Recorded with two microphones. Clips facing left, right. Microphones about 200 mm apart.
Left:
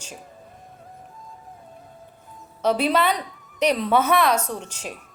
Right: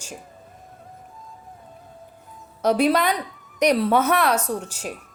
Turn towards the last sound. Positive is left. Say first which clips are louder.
# right 4 dB
turn(degrees=-10)  # may be behind; listen again after turning